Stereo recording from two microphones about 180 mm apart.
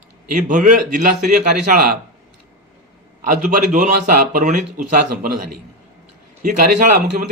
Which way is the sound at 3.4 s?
45° right (ahead or behind).